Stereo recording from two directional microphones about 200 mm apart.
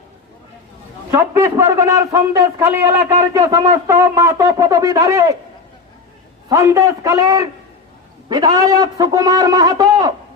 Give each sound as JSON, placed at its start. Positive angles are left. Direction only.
{"t": 1.1, "sound": "a man's voice", "side_deg": -15}
{"t": 6.5, "sound": "a man's voice", "side_deg": -15}